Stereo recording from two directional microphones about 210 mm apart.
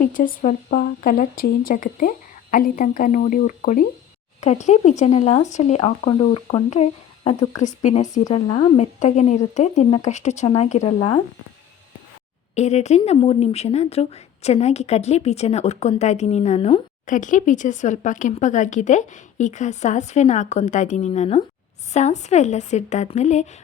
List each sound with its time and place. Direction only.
0.0 s speech: 40° left (ahead or behind)
12.5 s speech: 30° left (ahead or behind)